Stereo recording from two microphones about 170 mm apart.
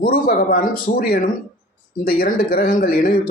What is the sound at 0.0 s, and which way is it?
Speech, 60° left (ahead or behind).